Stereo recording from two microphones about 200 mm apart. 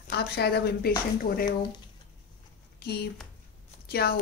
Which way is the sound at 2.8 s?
50° left (ahead or behind).